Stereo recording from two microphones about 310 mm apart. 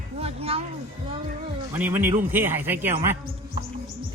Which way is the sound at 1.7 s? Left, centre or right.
Centre.